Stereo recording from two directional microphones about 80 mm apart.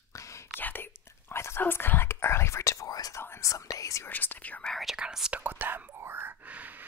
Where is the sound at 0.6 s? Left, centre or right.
Left.